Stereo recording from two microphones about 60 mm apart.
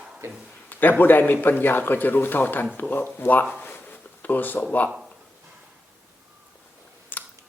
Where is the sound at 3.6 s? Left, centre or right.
Left.